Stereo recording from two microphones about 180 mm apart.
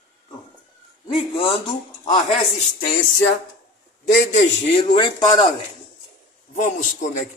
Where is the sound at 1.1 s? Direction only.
30° left (ahead or behind).